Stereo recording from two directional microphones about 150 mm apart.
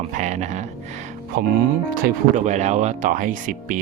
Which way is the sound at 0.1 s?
55° right (ahead or behind).